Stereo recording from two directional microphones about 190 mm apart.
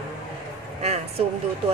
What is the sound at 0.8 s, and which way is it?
Speech, 35° right (ahead or behind).